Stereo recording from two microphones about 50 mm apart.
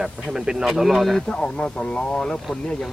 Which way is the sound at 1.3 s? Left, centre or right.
Left.